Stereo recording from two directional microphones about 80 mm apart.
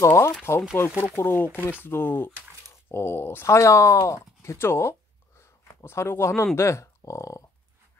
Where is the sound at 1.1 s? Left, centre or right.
Left.